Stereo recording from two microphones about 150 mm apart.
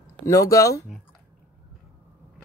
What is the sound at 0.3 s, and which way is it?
Speech, 20° left (ahead or behind).